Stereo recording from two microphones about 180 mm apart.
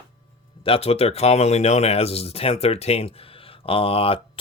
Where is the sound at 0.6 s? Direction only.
30° left (ahead or behind).